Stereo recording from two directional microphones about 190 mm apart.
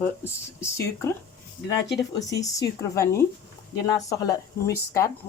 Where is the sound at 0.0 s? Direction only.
15° left (ahead or behind).